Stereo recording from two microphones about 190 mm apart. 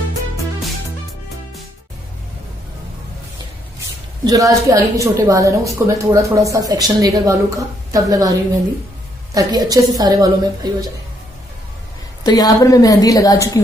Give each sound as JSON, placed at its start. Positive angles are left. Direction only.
{"t": 4.2, "sound": "a woman's voice", "side_deg": -20}
{"t": 12.2, "sound": "a woman's voice", "side_deg": 20}